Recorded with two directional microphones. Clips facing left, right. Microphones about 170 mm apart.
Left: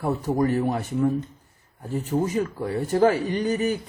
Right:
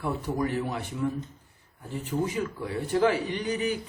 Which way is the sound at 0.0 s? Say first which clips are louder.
Left 6 dB; 45° left (ahead or behind).